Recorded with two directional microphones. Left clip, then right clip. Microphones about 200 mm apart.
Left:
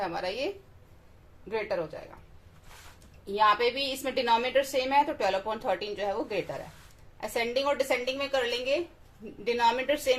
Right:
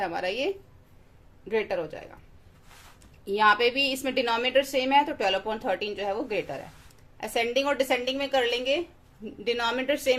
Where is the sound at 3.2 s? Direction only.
30° right (ahead or behind).